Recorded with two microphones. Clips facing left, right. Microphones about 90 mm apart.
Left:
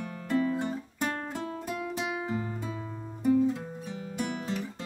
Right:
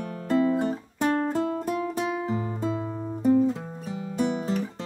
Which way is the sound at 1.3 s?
50° right (ahead or behind).